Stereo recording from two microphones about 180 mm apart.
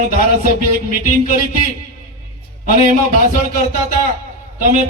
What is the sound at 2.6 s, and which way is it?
A man's voice, 45° right (ahead or behind).